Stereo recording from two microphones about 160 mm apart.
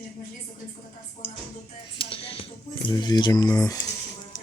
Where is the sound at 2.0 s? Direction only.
35° left (ahead or behind).